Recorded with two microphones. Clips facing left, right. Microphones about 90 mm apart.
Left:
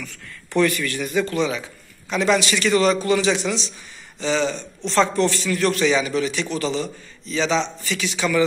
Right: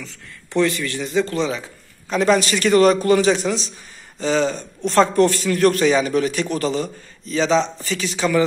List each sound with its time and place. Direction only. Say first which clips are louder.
0.0 s a man's voice: left 1 dB; 20° right (ahead or behind)